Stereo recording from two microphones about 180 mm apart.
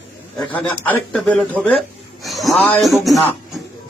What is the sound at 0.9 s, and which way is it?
Speech, 10° left (ahead or behind).